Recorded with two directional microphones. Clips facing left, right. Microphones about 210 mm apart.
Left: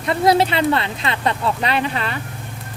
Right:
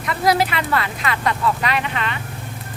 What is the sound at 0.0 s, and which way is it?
Speech, 30° left (ahead or behind).